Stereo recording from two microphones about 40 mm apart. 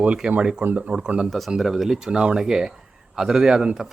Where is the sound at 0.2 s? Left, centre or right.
Right.